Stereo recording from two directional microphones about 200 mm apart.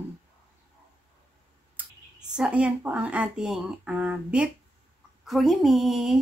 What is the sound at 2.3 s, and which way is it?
Speech, 5° right (ahead or behind).